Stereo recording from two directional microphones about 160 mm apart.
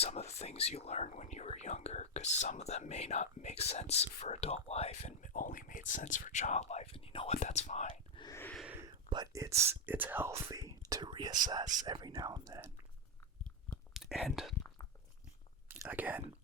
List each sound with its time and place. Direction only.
0.0 s speech: 40° left (ahead or behind)
5.2 s speech: 55° left (ahead or behind); by 7.3 s 35° left (ahead or behind)
7.3 s speech: 45° left (ahead or behind)
8.1 s a sound: 25° left (ahead or behind)
8.5 s a sound: 5° right (ahead or behind)
9.0 s speech: 25° right (ahead or behind)
11.6 s speech: 50° right (ahead or behind)
11.9 s speech: 25° right (ahead or behind)
13.9 s speech: centre (ahead or behind)
15.7 s speech: 10° right (ahead or behind)